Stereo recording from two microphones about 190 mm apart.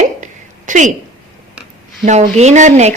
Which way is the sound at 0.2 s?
40° right (ahead or behind).